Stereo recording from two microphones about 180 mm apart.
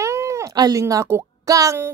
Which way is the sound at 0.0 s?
15° right (ahead or behind).